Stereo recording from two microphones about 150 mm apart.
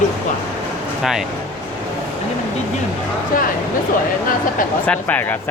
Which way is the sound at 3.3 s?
70° left (ahead or behind).